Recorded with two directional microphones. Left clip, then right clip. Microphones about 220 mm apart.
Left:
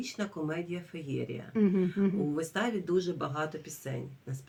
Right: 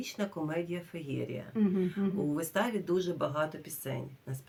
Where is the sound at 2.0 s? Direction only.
45° left (ahead or behind).